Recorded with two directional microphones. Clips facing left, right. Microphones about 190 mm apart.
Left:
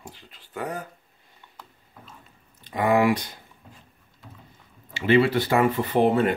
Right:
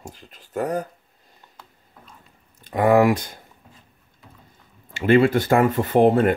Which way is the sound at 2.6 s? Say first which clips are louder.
Right 4 dB; 45° right (ahead or behind).